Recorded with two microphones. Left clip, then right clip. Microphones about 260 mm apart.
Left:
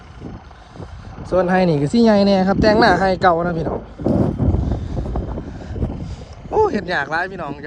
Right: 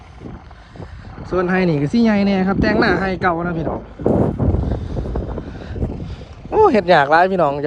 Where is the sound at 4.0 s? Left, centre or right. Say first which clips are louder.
Right 3 dB; centre.